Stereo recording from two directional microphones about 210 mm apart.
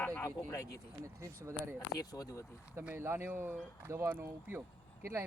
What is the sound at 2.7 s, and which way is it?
Speech, 10° right (ahead or behind).